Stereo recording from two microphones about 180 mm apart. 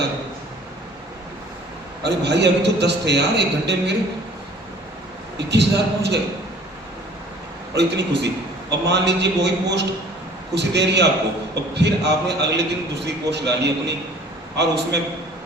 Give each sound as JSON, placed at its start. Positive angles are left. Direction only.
{"t": 2.0, "sound": "a man's voice", "side_deg": -70}
{"t": 5.5, "sound": "a man's voice", "side_deg": -70}
{"t": 7.8, "sound": "a man's voice", "side_deg": -75}